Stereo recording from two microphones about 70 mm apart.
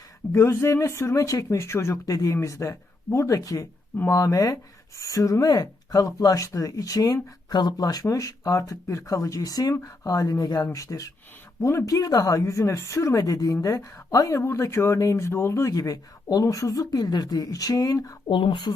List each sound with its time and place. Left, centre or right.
0.3 s speech: left
8.0 s speech: left
10.7 s speech: left
15.7 s speech: left